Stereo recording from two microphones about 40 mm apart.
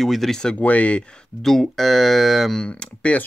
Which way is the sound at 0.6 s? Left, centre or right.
Left.